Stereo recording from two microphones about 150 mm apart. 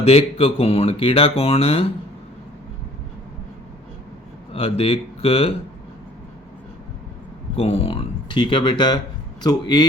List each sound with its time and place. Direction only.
0.0 s speech: 40° left (ahead or behind)
4.5 s speech: 40° left (ahead or behind)
7.5 s speech: 40° left (ahead or behind)